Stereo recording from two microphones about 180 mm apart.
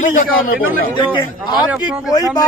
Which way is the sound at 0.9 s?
25° left (ahead or behind).